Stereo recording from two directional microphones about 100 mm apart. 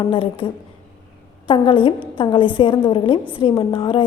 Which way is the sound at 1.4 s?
55° left (ahead or behind).